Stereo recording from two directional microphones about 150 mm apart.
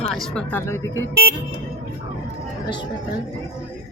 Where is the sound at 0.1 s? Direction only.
5° left (ahead or behind).